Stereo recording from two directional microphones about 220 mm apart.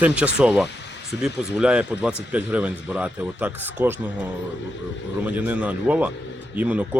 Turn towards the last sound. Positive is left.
turn(degrees=-5)  # may be behind; listen again after turning